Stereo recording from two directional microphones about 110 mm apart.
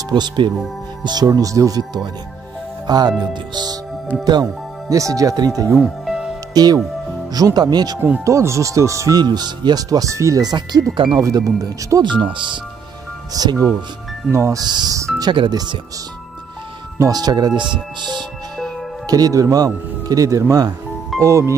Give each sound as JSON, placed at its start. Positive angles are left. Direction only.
{"t": 0.1, "sound": "speech", "side_deg": -40}
{"t": 2.9, "sound": "speech", "side_deg": -40}
{"t": 6.0, "sound": "music", "side_deg": -5}
{"t": 6.5, "sound": "speech", "side_deg": -35}
{"t": 8.3, "sound": "speech", "side_deg": -25}
{"t": 9.2, "sound": "speech", "side_deg": -40}
{"t": 12.0, "sound": "speech", "side_deg": -45}
{"t": 13.3, "sound": "speech", "side_deg": -35}
{"t": 14.6, "sound": "speech", "side_deg": -40}
{"t": 17.0, "sound": "speech", "side_deg": -35}